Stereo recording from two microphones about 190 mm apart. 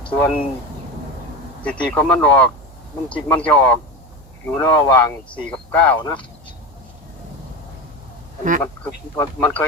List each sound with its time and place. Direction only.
0.1 s speech: 5° left (ahead or behind)
1.6 s speech: 5° left (ahead or behind)
6.0 s speech: 25° left (ahead or behind)
8.6 s speech: 10° left (ahead or behind)